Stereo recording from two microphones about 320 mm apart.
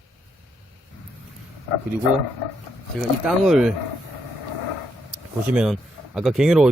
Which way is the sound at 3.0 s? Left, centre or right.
Centre.